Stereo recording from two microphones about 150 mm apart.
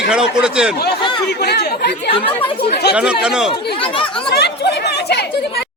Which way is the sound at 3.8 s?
35° left (ahead or behind).